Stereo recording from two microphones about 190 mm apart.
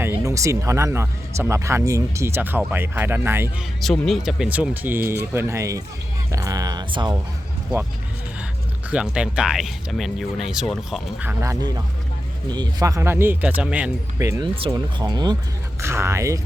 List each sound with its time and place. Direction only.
0.0 s speech: 15° right (ahead or behind)
3.8 s speech: centre (ahead or behind); by 7.2 s 20° right (ahead or behind)
8.9 s speech: 5° right (ahead or behind)